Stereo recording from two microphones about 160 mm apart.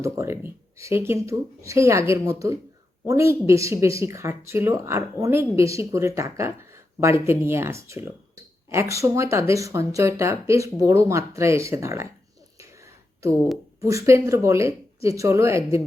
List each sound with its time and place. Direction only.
0.0 s speech: 15° right (ahead or behind)
12.5 s a sound: 20° right (ahead or behind)
13.8 s speech: 20° right (ahead or behind)